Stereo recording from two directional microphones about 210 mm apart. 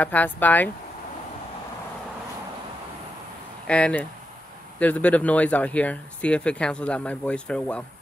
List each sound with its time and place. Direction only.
0.0 s speech: 10° left (ahead or behind)
3.6 s speech: 5° left (ahead or behind)